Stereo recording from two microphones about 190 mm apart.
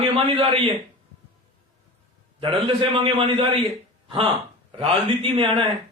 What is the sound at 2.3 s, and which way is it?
A man's voice, 25° right (ahead or behind).